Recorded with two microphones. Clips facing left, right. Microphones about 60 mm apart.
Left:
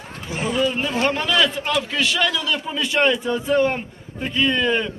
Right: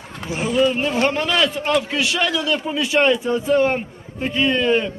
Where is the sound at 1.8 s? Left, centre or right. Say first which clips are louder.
Even; centre.